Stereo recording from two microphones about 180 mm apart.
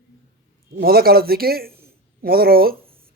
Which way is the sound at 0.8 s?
60° right (ahead or behind).